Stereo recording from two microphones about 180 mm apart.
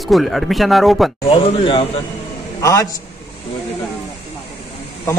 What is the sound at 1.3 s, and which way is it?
Speech, 30° left (ahead or behind).